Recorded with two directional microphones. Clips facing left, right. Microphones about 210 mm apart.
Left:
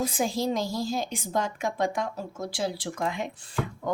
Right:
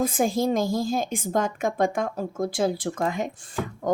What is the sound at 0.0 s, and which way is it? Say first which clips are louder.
A woman's voice: right 4 dB; 50° right (ahead or behind).